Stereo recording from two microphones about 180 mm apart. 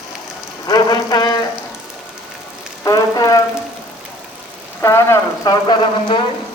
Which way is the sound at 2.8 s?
20° left (ahead or behind).